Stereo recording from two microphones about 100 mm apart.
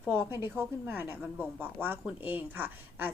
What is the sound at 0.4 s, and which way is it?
A woman's voice, 20° right (ahead or behind).